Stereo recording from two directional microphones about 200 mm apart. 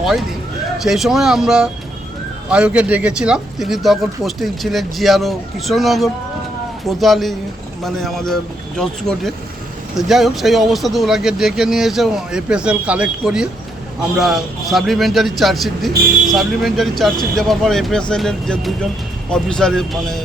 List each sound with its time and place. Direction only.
0.0 s speech: centre (ahead or behind)